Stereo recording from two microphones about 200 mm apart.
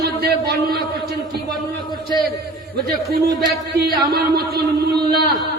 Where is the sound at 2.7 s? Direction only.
50° right (ahead or behind).